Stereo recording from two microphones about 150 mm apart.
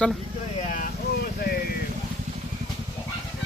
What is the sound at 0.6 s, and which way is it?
Vehicle, 60° left (ahead or behind).